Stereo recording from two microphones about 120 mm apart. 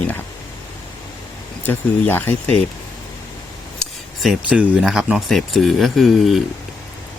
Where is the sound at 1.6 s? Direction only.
15° left (ahead or behind).